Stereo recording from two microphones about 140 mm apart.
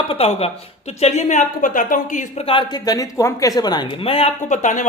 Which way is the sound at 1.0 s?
55° left (ahead or behind).